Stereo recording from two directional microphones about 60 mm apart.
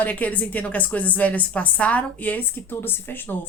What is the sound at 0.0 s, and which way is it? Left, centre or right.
Speech, left.